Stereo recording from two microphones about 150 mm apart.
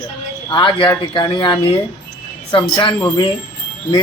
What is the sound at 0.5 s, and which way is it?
Speech, 30° left (ahead or behind).